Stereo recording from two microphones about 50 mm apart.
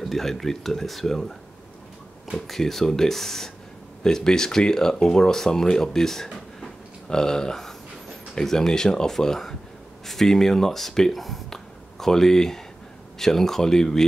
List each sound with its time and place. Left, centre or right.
0.0 s speech: centre
2.3 s speech: centre
6.3 s a sound: centre
8.4 s speech: centre